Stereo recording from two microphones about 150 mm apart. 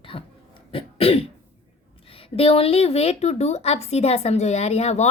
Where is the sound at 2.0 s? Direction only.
40° left (ahead or behind).